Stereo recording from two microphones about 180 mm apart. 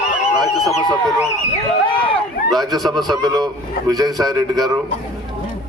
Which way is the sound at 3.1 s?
20° right (ahead or behind).